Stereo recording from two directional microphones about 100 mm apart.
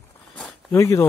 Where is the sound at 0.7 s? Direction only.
30° left (ahead or behind).